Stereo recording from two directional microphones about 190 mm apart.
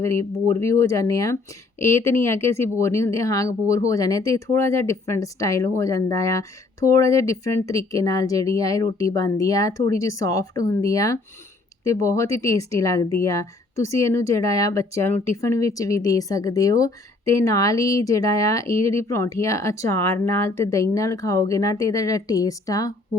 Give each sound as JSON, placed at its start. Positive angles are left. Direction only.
{"t": 0.0, "sound": "speech", "side_deg": 15}